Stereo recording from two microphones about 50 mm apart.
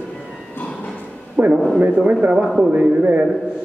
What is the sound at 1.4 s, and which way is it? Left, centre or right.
Speech, right.